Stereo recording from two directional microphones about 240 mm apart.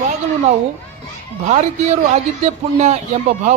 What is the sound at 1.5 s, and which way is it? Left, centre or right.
Speech, right.